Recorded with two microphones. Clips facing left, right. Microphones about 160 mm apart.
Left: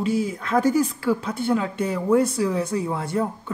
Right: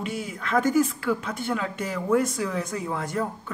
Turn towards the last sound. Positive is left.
turn(degrees=30)  # may be behind; listen again after turning